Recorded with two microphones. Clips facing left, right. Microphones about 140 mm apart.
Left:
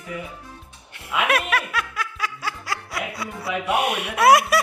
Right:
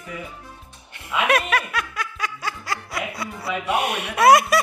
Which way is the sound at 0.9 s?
5° left (ahead or behind).